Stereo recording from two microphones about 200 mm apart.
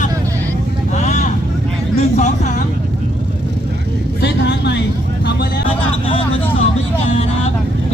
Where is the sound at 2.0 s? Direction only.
35° left (ahead or behind).